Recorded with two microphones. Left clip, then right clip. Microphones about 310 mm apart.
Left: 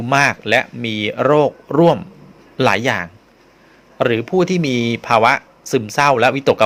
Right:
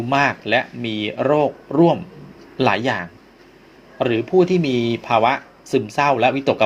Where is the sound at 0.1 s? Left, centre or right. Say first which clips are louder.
Left 4 dB; left.